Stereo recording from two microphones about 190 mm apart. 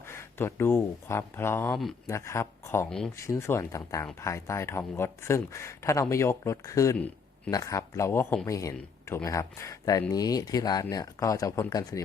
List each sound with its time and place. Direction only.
0.0 s speech: 15° left (ahead or behind)